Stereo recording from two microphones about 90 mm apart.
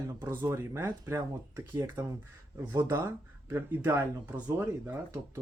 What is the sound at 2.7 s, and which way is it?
Speech, 30° right (ahead or behind).